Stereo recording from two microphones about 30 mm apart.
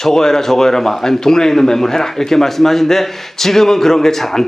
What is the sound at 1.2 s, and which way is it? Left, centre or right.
A man's voice, centre.